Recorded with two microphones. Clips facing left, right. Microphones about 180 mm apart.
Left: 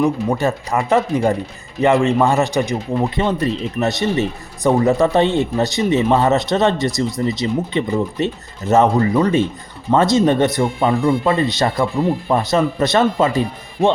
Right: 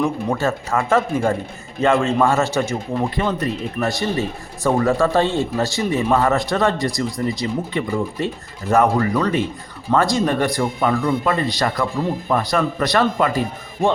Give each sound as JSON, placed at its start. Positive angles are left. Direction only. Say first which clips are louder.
{"t": 0.0, "sound": "speech", "louder": "left 3 dB", "side_deg": 15}